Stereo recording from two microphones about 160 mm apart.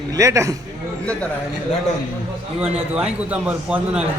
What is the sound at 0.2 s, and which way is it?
Speech, 20° right (ahead or behind).